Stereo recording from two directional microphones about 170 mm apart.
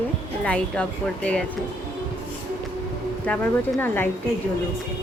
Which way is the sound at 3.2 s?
5° left (ahead or behind).